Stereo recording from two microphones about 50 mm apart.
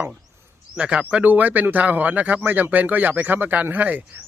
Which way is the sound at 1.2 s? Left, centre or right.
Right.